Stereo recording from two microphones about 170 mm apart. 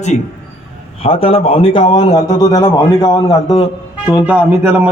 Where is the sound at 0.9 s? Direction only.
35° left (ahead or behind).